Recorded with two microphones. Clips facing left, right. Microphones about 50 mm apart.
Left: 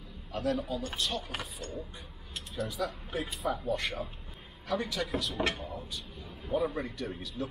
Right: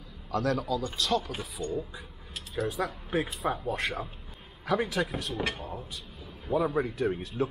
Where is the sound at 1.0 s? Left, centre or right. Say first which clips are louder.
Right 7 dB; right.